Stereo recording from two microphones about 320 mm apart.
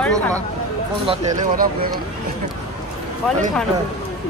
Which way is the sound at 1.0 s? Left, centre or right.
Centre.